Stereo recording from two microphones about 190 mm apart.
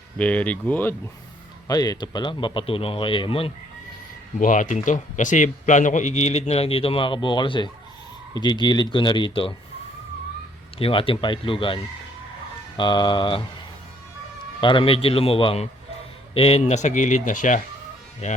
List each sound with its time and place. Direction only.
0.2 s speech: 5° left (ahead or behind)
1.6 s speech: 20° left (ahead or behind)
4.4 s a man's voice: 45° left (ahead or behind); by 9.5 s 25° left (ahead or behind)
10.8 s speech: 30° left (ahead or behind)
14.6 s a man's voice: 25° left (ahead or behind); by 17.6 s 40° left (ahead or behind)